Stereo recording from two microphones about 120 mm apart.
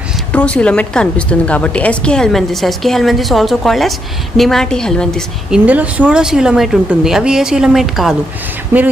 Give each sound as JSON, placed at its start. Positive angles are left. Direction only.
{"t": 0.3, "sound": "a woman's voice", "side_deg": 10}
{"t": 5.5, "sound": "a woman's voice", "side_deg": -10}
{"t": 8.7, "sound": "speech", "side_deg": -20}